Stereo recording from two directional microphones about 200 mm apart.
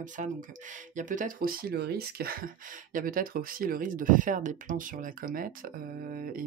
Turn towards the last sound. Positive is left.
turn(degrees=-45)  # may be behind; listen again after turning